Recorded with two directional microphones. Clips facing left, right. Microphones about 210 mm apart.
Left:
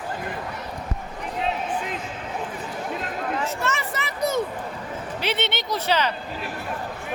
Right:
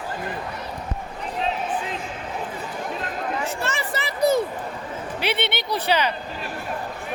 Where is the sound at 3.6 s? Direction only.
30° right (ahead or behind).